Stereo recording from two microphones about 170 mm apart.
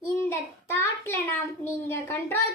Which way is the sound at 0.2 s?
15° left (ahead or behind).